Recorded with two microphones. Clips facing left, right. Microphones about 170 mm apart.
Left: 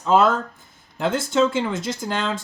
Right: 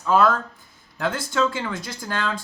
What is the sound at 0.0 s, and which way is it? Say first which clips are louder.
Speech: left 1 dB; 25° left (ahead or behind).